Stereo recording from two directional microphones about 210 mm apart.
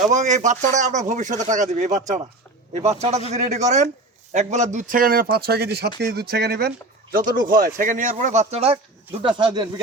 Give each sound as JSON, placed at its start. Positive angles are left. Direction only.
{"t": 0.0, "sound": "a man's voice", "side_deg": -35}